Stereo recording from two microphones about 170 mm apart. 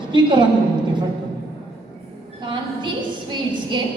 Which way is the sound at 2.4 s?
30° right (ahead or behind).